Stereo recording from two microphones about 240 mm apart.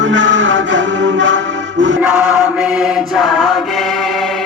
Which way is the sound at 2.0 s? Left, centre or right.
Centre.